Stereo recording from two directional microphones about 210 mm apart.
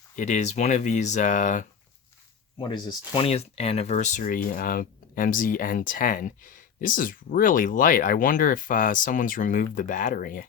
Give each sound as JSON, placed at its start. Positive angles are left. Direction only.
{"t": 0.2, "sound": "speech", "side_deg": 35}
{"t": 3.2, "sound": "speech", "side_deg": 30}